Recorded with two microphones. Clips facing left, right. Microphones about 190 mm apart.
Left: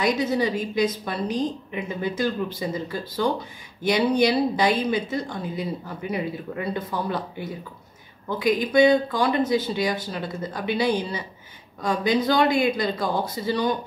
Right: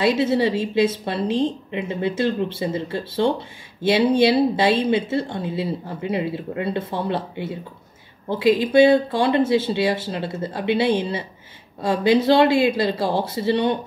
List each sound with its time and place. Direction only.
0.0 s a woman's voice: 30° right (ahead or behind)